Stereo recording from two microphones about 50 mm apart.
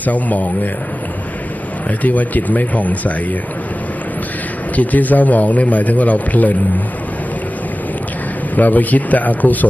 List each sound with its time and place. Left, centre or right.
0.0 s a man's voice: left
2.0 s a man's voice: left
4.8 s a man's voice: left
8.5 s a man's voice: left